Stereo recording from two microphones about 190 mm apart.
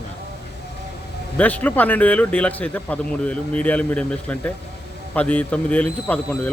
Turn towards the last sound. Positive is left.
turn(degrees=5)  # may be behind; listen again after turning